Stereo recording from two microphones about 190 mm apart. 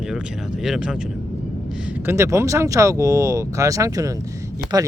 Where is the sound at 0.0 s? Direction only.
5° right (ahead or behind).